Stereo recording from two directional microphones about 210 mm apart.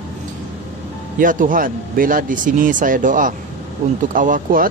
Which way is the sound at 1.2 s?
40° right (ahead or behind).